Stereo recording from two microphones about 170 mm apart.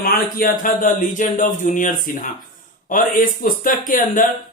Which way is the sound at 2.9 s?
55° left (ahead or behind).